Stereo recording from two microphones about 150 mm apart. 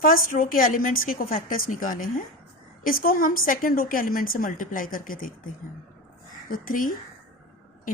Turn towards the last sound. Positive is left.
turn(degrees=65)  # may be behind; listen again after turning